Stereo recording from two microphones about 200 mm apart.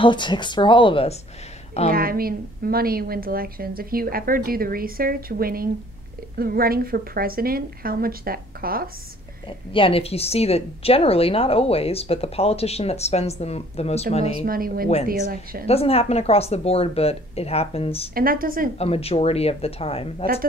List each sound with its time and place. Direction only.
0.0 s a woman's voice: 25° left (ahead or behind)
1.9 s a woman's voice: 45° right (ahead or behind)
9.5 s a woman's voice: 25° left (ahead or behind)
14.4 s a woman's voice: 45° right (ahead or behind)
15.6 s a woman's voice: 30° left (ahead or behind)
18.1 s a woman's voice: 45° right (ahead or behind)
18.8 s a woman's voice: 30° left (ahead or behind)